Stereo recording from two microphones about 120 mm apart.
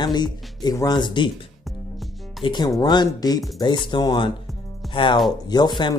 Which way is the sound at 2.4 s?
40° left (ahead or behind).